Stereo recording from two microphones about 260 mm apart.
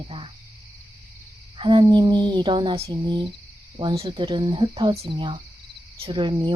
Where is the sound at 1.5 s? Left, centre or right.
Centre.